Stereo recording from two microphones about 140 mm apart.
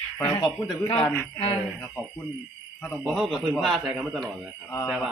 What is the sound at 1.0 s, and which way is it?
Speech, 10° left (ahead or behind).